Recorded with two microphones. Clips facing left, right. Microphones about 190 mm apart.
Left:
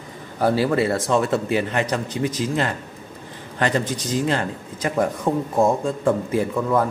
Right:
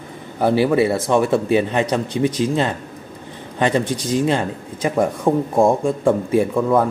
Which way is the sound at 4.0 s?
15° right (ahead or behind).